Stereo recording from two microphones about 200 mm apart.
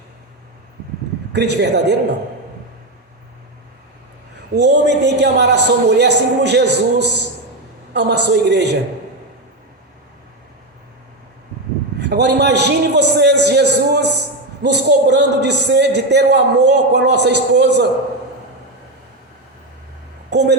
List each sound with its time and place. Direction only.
1.3 s a man's voice: 55° right (ahead or behind)
4.5 s a man's voice: 60° right (ahead or behind)
11.9 s a man's voice: 60° right (ahead or behind)
20.3 s speech: 60° right (ahead or behind)